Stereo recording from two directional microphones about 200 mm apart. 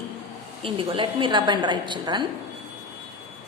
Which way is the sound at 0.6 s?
25° right (ahead or behind).